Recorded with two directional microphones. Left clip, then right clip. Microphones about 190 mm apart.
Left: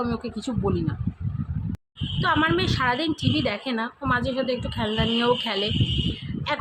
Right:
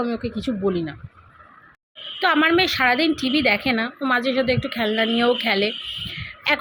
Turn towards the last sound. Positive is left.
turn(degrees=-20)  # may be behind; listen again after turning